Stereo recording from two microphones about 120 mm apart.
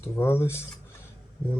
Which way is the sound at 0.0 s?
20° left (ahead or behind).